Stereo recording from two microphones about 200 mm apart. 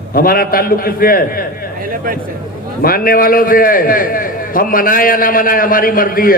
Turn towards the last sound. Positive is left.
turn(degrees=45)  # may be behind; listen again after turning